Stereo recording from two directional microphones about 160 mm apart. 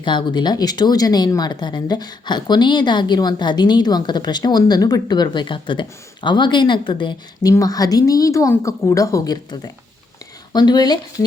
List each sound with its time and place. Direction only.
0.0 s speech: 30° left (ahead or behind)